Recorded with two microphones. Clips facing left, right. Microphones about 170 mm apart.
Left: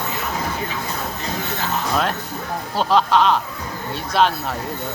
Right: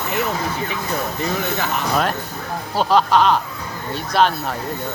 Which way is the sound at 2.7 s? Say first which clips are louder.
Right 1 dB; centre (ahead or behind).